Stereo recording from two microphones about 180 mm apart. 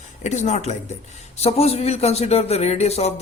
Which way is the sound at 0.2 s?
40° left (ahead or behind).